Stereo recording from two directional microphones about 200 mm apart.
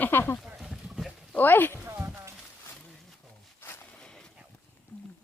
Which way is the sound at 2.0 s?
10° right (ahead or behind).